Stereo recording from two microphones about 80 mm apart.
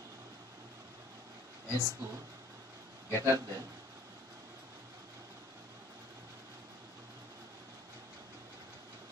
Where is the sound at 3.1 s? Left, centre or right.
Right.